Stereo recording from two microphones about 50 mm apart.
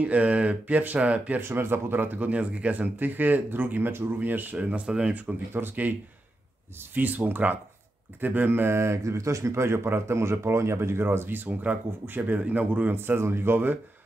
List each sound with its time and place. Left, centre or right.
0.0 s speech: right
1.4 s speech: right
4.6 s speech: right
5.5 s speech: right
6.8 s speech: right
8.7 s speech: right
12.9 s speech: right